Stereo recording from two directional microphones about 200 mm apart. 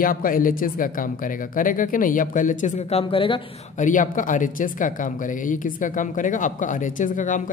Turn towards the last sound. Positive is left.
turn(degrees=40)  # may be behind; listen again after turning